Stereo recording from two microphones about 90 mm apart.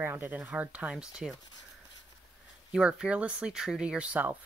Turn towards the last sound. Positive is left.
turn(degrees=-15)  # may be behind; listen again after turning